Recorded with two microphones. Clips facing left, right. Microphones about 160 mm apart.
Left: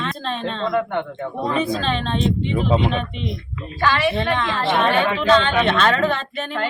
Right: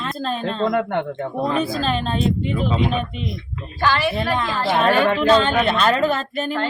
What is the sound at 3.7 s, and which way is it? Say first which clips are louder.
Speech: left 1 dB; centre (ahead or behind).